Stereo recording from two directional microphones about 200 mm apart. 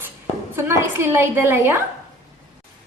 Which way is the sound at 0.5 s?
15° right (ahead or behind).